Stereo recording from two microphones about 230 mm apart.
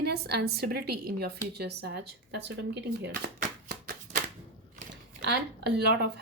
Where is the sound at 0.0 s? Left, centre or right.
Right.